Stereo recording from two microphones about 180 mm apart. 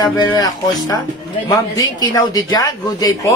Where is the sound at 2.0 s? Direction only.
20° left (ahead or behind).